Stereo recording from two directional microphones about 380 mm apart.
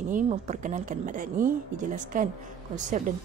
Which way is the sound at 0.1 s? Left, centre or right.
Centre.